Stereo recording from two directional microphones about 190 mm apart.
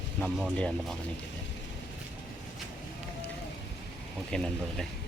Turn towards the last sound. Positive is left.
turn(degrees=5)  # may be behind; listen again after turning